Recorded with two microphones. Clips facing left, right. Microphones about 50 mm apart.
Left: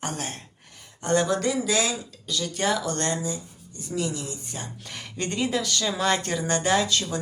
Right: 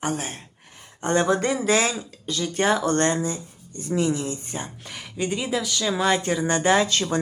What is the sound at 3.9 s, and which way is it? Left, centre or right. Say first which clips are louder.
Speech: right 6 dB; right.